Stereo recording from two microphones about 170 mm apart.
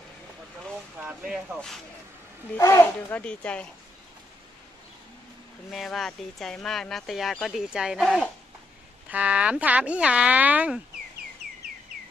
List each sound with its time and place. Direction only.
0.7 s speech: 5° right (ahead or behind)
2.5 s speech: 15° left (ahead or behind)
5.7 s speech: centre (ahead or behind)